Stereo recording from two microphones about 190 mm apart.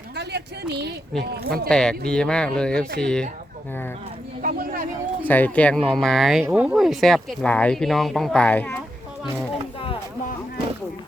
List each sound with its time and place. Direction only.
0.2 s speech: 60° right (ahead or behind)
1.7 s speech: 5° left (ahead or behind)
4.4 s a sound: 50° right (ahead or behind)
5.3 s speech: 10° left (ahead or behind)